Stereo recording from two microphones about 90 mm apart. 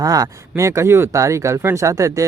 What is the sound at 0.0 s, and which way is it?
Speech, 40° right (ahead or behind).